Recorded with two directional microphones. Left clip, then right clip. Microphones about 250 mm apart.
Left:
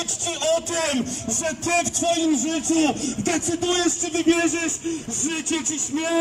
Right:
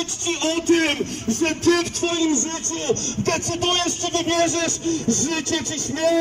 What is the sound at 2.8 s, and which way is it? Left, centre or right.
Speech, centre.